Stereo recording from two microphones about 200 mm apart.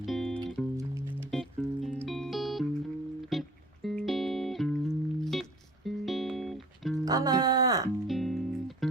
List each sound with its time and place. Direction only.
0.0 s music: centre (ahead or behind)
7.0 s music: 20° right (ahead or behind)
8.0 s music: centre (ahead or behind)